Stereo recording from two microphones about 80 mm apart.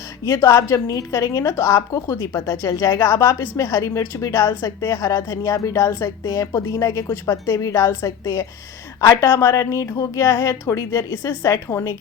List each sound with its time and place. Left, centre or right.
0.3 s speech: left
11.7 s a woman's voice: left